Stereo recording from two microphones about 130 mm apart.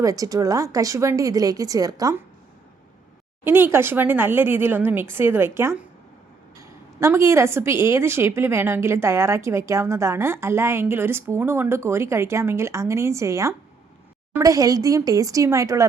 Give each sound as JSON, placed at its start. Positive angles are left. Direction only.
{"t": 0.0, "sound": "a woman's voice", "side_deg": -25}
{"t": 3.4, "sound": "a woman's voice", "side_deg": -20}